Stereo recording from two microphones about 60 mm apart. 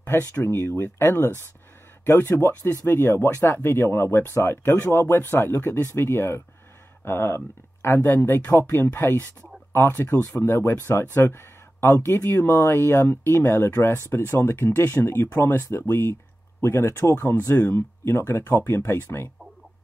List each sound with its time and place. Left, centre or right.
0.5 s speech: left
2.6 s speech: left
8.5 s speech: left